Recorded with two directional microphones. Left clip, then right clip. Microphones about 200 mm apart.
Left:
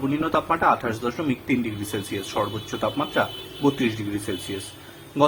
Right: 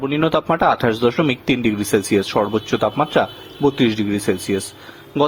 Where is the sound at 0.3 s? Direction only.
45° right (ahead or behind).